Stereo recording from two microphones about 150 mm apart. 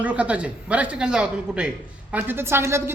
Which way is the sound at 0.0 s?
10° right (ahead or behind).